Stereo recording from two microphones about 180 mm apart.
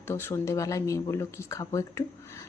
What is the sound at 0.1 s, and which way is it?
A woman's voice, 15° left (ahead or behind).